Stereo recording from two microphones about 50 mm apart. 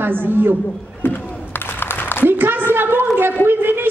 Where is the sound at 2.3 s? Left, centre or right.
Right.